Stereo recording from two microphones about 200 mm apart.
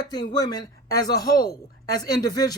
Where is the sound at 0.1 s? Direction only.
20° left (ahead or behind).